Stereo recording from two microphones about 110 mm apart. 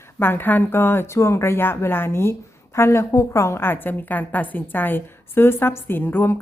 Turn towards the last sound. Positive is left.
turn(degrees=20)  # may be behind; listen again after turning